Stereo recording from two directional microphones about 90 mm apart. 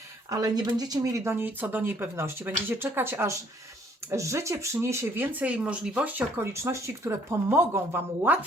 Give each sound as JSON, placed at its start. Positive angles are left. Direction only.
{"t": 0.3, "sound": "speech", "side_deg": -40}
{"t": 6.5, "sound": "speech", "side_deg": -30}